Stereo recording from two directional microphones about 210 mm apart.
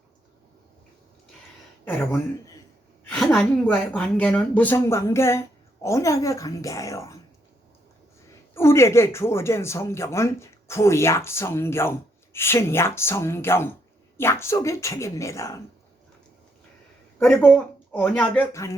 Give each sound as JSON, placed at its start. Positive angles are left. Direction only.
{"t": 1.8, "sound": "speech", "side_deg": 10}
{"t": 8.5, "sound": "speech", "side_deg": 10}
{"t": 17.2, "sound": "speech", "side_deg": 5}